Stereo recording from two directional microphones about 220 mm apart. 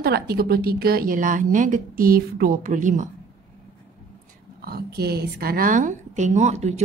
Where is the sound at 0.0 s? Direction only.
45° right (ahead or behind).